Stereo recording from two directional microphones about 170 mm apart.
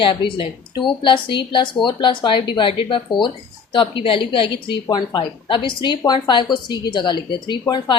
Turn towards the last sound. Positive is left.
turn(degrees=25)  # may be behind; listen again after turning